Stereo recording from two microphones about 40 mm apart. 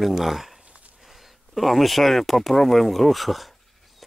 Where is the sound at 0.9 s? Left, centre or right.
Centre.